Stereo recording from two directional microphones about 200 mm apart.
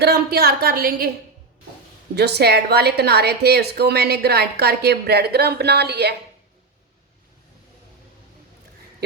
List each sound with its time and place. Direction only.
0.0 s a woman's voice: 50° right (ahead or behind)
2.1 s a woman's voice: 55° right (ahead or behind)